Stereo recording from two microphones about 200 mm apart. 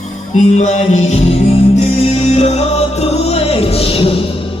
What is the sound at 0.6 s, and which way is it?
Music, 35° left (ahead or behind).